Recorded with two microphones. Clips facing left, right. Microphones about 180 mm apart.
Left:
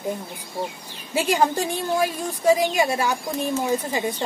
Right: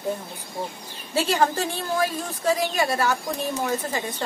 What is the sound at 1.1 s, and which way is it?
A woman's voice, 15° left (ahead or behind).